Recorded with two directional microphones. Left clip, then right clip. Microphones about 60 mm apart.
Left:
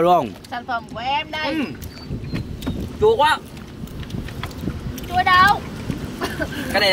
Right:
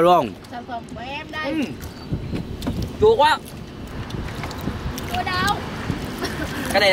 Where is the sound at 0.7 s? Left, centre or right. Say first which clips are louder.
Left 9 dB; left.